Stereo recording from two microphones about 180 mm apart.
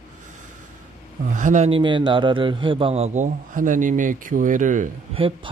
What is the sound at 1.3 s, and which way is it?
A man's voice, 45° right (ahead or behind).